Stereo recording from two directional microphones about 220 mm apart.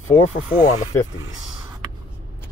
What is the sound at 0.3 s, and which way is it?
Speech, 30° left (ahead or behind).